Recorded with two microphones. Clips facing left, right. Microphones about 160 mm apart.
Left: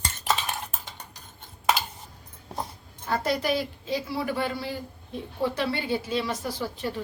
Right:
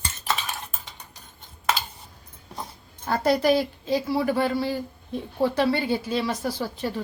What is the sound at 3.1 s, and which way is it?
A woman's voice, 35° right (ahead or behind).